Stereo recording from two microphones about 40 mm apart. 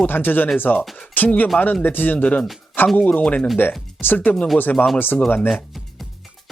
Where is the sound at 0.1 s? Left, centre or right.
Left.